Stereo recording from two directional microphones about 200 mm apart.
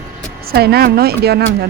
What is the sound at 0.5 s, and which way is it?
Speech, 50° right (ahead or behind).